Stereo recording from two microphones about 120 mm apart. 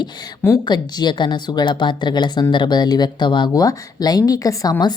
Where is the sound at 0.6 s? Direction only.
40° left (ahead or behind).